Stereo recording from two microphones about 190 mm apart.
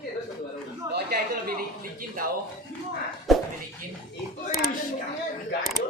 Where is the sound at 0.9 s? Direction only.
55° right (ahead or behind).